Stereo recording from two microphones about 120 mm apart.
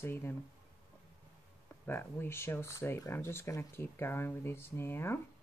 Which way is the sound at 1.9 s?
15° left (ahead or behind).